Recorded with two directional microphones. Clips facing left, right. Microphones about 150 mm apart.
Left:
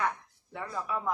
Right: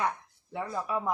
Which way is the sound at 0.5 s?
15° right (ahead or behind).